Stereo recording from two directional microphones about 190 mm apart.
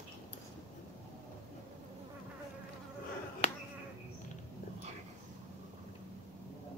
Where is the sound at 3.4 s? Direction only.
35° left (ahead or behind).